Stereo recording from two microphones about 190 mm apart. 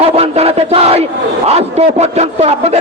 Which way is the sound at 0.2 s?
30° right (ahead or behind).